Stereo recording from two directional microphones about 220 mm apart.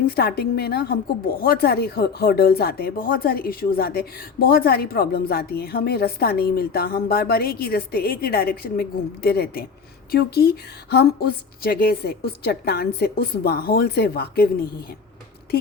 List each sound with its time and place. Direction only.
0.2 s a woman's voice: 45° left (ahead or behind)